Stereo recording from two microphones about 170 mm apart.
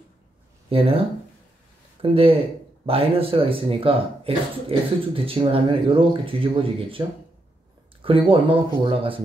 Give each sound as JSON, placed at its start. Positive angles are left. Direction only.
{"t": 0.7, "sound": "speech", "side_deg": -35}
{"t": 2.0, "sound": "speech", "side_deg": -35}
{"t": 8.0, "sound": "speech", "side_deg": -30}